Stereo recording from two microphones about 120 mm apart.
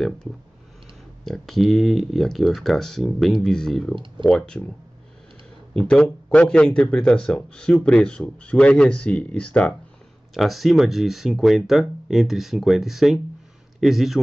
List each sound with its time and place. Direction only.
1.2 s speech: centre (ahead or behind)
3.9 s speech: 45° right (ahead or behind)
4.3 s speech: 5° left (ahead or behind)
5.8 s speech: 5° left (ahead or behind)
10.3 s speech: centre (ahead or behind)